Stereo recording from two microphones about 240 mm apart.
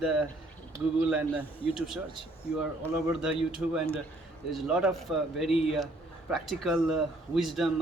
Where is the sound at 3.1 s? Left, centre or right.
Centre.